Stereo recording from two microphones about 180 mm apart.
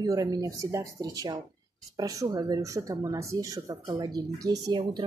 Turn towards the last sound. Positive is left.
turn(degrees=-20)  # may be behind; listen again after turning